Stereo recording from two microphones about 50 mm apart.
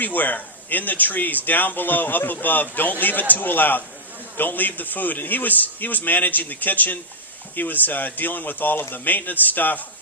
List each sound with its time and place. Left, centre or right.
0.0 s speech: left